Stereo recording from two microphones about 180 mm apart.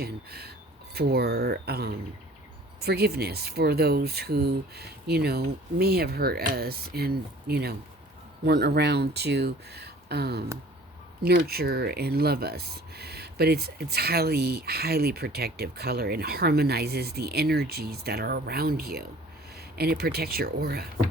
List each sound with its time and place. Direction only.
0.0 s speech: 60° right (ahead or behind)